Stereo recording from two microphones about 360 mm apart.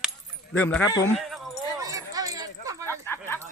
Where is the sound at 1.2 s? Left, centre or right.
Centre.